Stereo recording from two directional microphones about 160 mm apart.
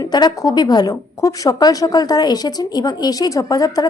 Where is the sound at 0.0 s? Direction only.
25° left (ahead or behind).